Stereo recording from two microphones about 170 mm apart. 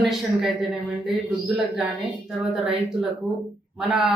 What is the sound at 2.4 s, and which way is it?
Speech, 5° right (ahead or behind).